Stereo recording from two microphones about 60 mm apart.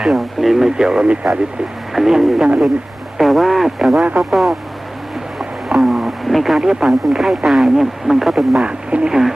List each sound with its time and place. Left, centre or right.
0.0 s speech: centre
5.4 s a sound: centre
6.6 s speech: centre
8.6 s speech: centre